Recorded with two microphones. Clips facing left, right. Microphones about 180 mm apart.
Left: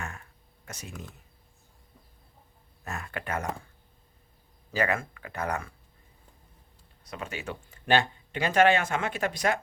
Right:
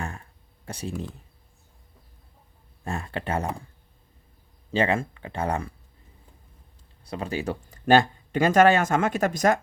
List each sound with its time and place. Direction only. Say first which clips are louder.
0.0 s a sound: right 5 dB; 30° right (ahead or behind)
2.8 s speech: right 6 dB; 30° right (ahead or behind)
4.7 s speech: right 5 dB; 25° right (ahead or behind)
7.0 s speech: right 8 dB; 30° right (ahead or behind)